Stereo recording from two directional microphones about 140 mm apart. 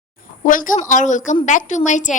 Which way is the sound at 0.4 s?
75° left (ahead or behind).